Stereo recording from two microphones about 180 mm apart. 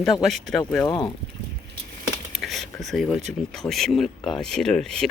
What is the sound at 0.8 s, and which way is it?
Speech, 20° left (ahead or behind).